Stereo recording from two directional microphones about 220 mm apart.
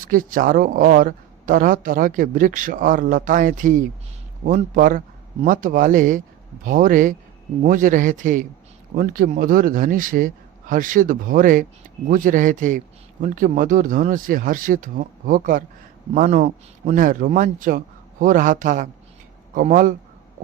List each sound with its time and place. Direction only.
0.0 s speech: 40° right (ahead or behind)